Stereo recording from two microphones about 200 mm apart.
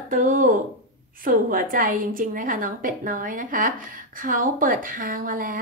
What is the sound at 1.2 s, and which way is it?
A woman's voice, 45° right (ahead or behind).